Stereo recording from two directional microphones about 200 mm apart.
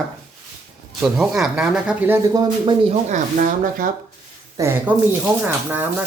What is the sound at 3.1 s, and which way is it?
Speech, 45° right (ahead or behind).